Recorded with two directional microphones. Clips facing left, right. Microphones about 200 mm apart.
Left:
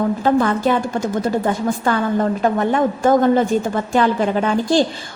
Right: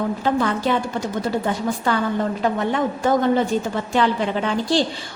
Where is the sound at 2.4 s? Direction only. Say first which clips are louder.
Left 4 dB; 50° left (ahead or behind).